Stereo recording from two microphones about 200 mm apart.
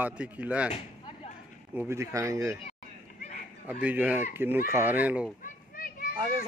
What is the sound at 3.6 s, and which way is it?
A man's voice, 10° right (ahead or behind).